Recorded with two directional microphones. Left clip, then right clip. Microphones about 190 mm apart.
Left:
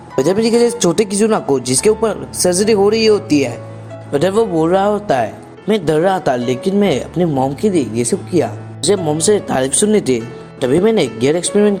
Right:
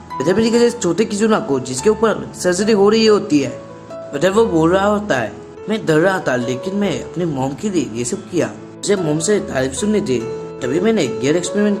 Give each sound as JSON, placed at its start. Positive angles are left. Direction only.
{"t": 0.2, "sound": "speech", "side_deg": 20}
{"t": 4.1, "sound": "speech", "side_deg": 30}